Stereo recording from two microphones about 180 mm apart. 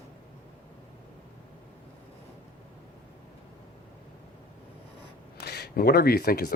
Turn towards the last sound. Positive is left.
turn(degrees=55)  # may be behind; listen again after turning